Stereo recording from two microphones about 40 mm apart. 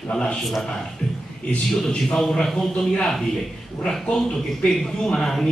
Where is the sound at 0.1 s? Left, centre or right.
Left.